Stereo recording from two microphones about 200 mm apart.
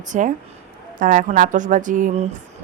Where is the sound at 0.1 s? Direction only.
40° right (ahead or behind).